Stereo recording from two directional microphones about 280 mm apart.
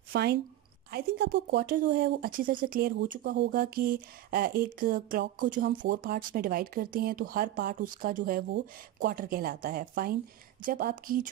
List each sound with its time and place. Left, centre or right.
0.1 s a woman's voice: right